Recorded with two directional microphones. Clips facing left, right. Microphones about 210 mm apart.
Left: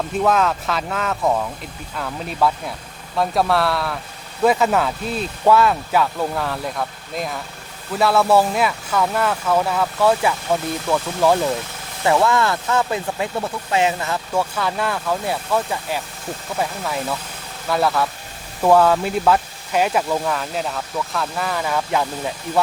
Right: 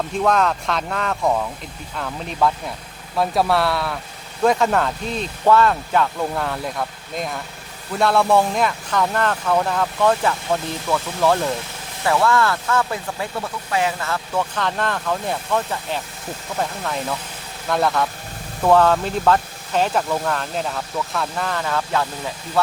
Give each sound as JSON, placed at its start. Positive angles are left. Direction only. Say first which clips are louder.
{"t": 0.2, "sound": "speech", "louder": "left 1 dB", "side_deg": 5}